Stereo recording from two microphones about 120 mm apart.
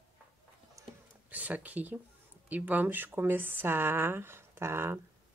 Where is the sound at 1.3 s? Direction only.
10° right (ahead or behind).